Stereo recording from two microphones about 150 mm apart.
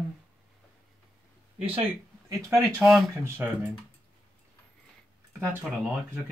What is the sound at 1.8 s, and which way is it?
Speech, 20° right (ahead or behind).